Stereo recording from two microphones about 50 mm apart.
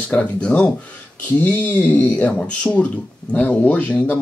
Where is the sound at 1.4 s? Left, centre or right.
Left.